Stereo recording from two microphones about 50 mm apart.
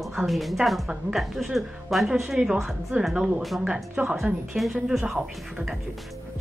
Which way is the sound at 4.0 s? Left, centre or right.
Right.